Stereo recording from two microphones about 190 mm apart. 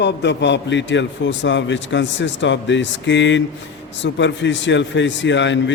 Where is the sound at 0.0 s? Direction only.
65° left (ahead or behind).